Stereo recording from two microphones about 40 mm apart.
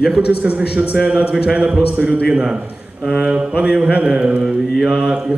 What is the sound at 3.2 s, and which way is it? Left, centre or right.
Speech, right.